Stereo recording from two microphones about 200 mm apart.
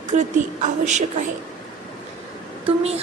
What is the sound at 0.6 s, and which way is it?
Speech, 35° right (ahead or behind).